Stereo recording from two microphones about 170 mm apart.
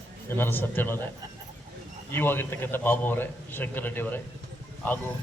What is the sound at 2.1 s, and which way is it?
A man's voice, 15° left (ahead or behind).